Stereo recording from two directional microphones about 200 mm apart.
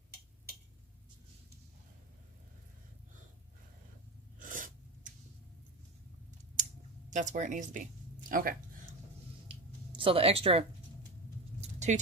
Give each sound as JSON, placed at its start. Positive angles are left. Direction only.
{"t": 4.4, "sound": "filing", "side_deg": -40}
{"t": 7.1, "sound": "speech", "side_deg": -35}
{"t": 9.5, "sound": "a sound", "side_deg": -25}
{"t": 11.6, "sound": "mouse", "side_deg": -35}